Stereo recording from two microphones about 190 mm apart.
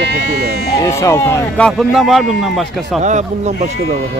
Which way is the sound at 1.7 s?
Centre (ahead or behind).